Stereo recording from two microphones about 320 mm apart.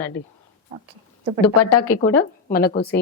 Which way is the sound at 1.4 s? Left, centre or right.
Left.